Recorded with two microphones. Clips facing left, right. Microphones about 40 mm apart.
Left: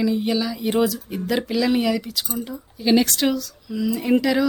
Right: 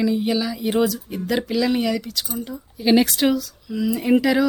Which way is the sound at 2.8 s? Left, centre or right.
Centre.